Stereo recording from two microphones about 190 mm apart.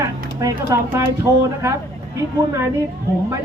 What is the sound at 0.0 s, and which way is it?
Speech, 20° right (ahead or behind).